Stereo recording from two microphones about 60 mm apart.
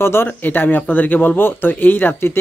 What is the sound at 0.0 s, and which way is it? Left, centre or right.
Speech, left.